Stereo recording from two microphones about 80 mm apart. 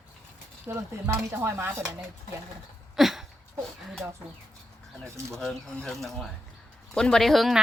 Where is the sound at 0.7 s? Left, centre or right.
Right.